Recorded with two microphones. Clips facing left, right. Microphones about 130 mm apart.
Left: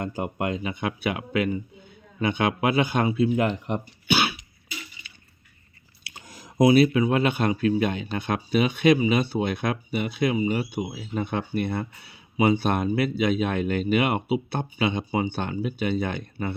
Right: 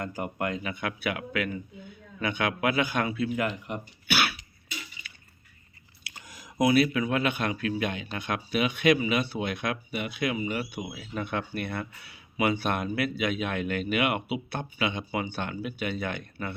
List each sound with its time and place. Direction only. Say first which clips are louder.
0.0 s speech: left 3 dB; 25° left (ahead or behind)
6.1 s a sound: left 3 dB; 30° left (ahead or behind)
6.9 s a man's voice: left 5 dB; 30° left (ahead or behind)